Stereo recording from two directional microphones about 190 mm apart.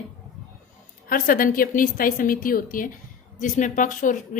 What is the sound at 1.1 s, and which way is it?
A woman's voice, 45° left (ahead or behind).